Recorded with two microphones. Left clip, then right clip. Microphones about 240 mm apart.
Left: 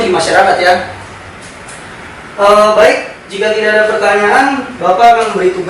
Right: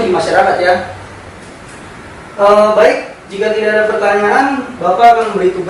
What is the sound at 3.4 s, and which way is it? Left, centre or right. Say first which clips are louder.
Speech: left 2 dB; centre.